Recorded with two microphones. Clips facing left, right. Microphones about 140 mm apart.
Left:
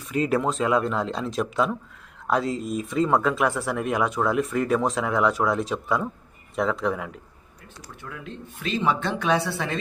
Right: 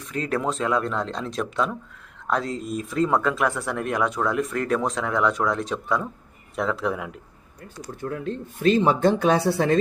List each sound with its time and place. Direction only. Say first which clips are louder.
0.1 s speech: left 3 dB; 5° left (ahead or behind)
8.0 s speech: right 9 dB; 45° right (ahead or behind)